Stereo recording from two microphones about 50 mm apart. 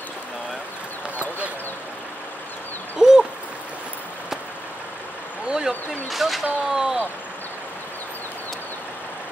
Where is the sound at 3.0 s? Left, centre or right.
Centre.